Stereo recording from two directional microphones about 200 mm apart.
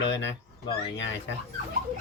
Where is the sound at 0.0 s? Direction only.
65° left (ahead or behind).